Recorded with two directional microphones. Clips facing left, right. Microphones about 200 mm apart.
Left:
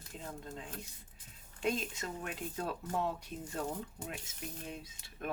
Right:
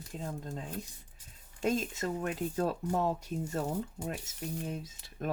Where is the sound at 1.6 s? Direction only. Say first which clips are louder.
Right 5 dB; 40° right (ahead or behind).